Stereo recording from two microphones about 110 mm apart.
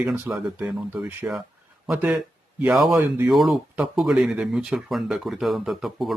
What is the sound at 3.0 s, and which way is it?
Speech, 20° right (ahead or behind).